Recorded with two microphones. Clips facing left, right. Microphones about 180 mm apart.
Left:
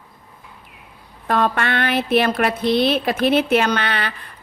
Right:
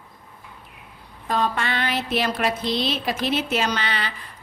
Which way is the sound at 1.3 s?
60° left (ahead or behind).